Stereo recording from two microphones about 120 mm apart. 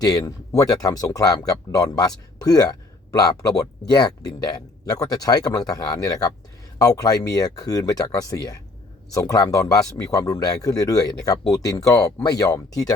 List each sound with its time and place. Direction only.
0.0 s speech: 30° left (ahead or behind)